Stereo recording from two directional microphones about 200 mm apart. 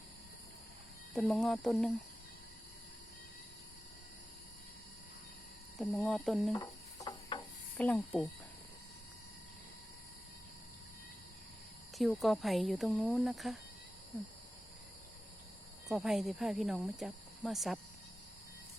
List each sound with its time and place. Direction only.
1.1 s speech: centre (ahead or behind)
5.7 s speech: 5° left (ahead or behind)
6.6 s music: 20° left (ahead or behind)
7.8 s speech: 10° left (ahead or behind)
11.9 s speech: centre (ahead or behind)
15.9 s speech: centre (ahead or behind)